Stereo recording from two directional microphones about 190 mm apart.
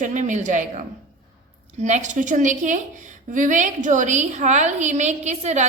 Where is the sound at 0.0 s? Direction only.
40° right (ahead or behind).